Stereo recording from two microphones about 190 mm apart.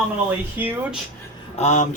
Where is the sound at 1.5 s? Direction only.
35° left (ahead or behind).